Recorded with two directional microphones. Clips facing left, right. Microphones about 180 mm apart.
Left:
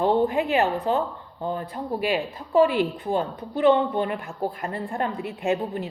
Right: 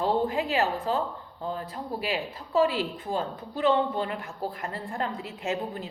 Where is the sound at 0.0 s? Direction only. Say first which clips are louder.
Left 5 dB; 25° left (ahead or behind).